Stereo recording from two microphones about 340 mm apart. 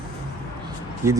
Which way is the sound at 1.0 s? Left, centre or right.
Centre.